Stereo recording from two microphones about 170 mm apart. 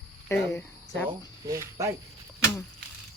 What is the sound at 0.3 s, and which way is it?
Speech, 15° left (ahead or behind).